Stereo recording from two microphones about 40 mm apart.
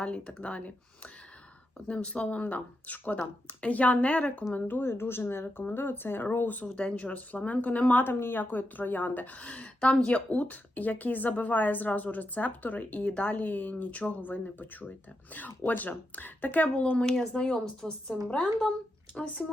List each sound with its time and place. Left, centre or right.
0.0 s speech: left
4.8 s speech: left
5.7 s speech: left
6.4 s a woman's voice: left
6.7 s speech: left
8.1 s a woman's voice: left
17.3 s speech: left